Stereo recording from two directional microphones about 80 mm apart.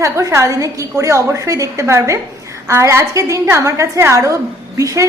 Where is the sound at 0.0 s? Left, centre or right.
Right.